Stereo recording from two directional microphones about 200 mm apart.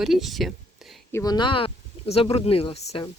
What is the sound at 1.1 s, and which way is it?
Speech, 20° left (ahead or behind).